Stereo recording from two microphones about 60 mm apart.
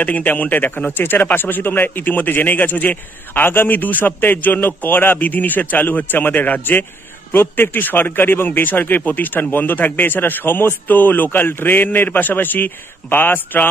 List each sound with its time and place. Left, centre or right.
0.0 s speech: left